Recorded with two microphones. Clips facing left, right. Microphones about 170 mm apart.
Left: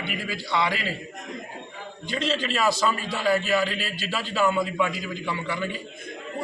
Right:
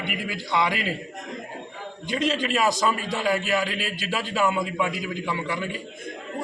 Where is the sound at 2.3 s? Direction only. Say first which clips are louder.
Even; 15° right (ahead or behind).